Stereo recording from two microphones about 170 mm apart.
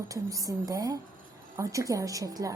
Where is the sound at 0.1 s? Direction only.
20° right (ahead or behind).